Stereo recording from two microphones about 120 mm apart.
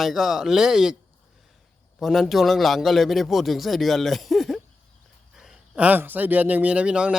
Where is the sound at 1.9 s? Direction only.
Centre (ahead or behind).